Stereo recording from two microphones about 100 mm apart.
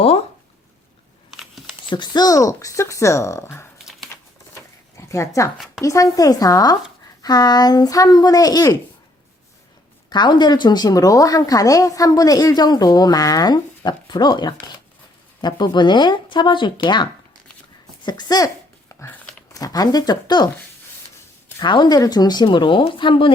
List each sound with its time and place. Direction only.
1.9 s a woman's voice: 45° left (ahead or behind); by 3.7 s 25° left (ahead or behind)
4.1 s a sound: 30° left (ahead or behind)
5.8 s a woman's voice: 35° left (ahead or behind)
10.1 s a woman's voice: 50° left (ahead or behind)
18.9 s a sound: 25° left (ahead or behind)
19.5 s a woman's voice: 40° left (ahead or behind)
21.6 s speech: 50° left (ahead or behind)